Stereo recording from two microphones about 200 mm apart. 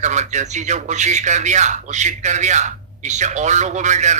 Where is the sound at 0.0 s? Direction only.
35° right (ahead or behind).